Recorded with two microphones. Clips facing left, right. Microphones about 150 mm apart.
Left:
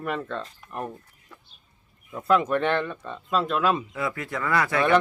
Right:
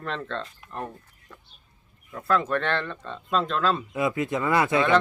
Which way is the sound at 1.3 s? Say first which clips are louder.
Right 1 dB; 10° left (ahead or behind).